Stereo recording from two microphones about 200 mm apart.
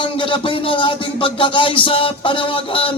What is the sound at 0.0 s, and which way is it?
A man's voice, 25° left (ahead or behind).